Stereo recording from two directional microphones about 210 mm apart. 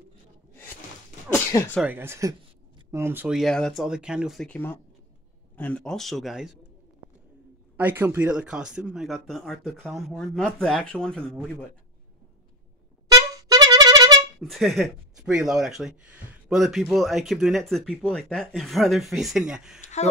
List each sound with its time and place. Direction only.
1.3 s speech: 10° left (ahead or behind)
1.8 s speech: 10° right (ahead or behind)
7.7 s speech: 10° right (ahead or behind)
13.1 s music: 15° right (ahead or behind)
14.4 s speech: centre (ahead or behind)
19.8 s a sound: 35° left (ahead or behind)